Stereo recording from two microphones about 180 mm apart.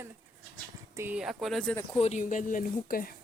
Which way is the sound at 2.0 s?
40° left (ahead or behind).